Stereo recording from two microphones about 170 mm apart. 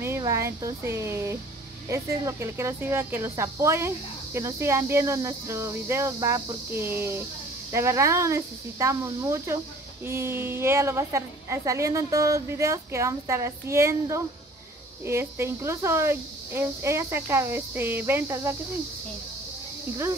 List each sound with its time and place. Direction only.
0.0 s speech: 15° right (ahead or behind)